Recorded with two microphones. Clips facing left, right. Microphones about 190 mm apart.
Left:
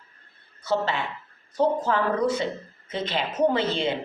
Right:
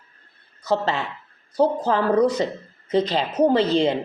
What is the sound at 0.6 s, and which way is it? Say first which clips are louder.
A woman's voice: right 3 dB; 40° right (ahead or behind).